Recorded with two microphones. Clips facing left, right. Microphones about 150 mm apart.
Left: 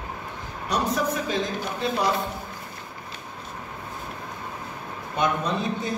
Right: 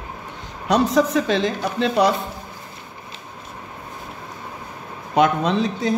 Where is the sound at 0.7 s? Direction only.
90° right.